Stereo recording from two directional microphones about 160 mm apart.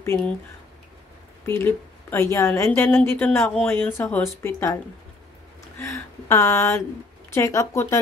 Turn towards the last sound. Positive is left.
turn(degrees=20)  # may be behind; listen again after turning